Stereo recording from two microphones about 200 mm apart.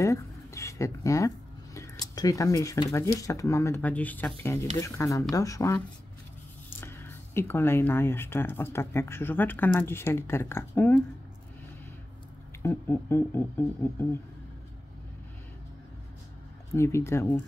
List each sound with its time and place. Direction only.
0.0 s speech: 15° left (ahead or behind)
6.8 s speech: 10° left (ahead or behind)
12.6 s speech: 10° left (ahead or behind)
16.7 s speech: 15° left (ahead or behind)